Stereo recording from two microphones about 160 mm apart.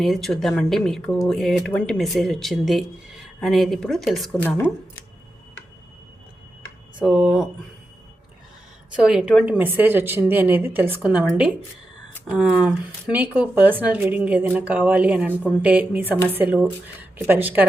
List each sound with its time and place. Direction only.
0.0 s speech: centre (ahead or behind)
4.4 s speech: 15° left (ahead or behind)
7.0 s speech: 5° right (ahead or behind)
9.0 s speech: 5° right (ahead or behind)